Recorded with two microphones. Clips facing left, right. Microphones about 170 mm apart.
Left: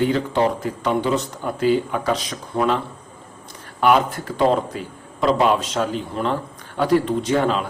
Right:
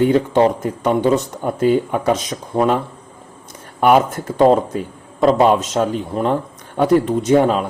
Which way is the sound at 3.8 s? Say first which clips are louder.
Right 4 dB; 50° right (ahead or behind).